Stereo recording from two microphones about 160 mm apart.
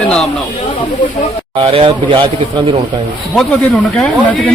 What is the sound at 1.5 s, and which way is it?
Speech, 30° right (ahead or behind).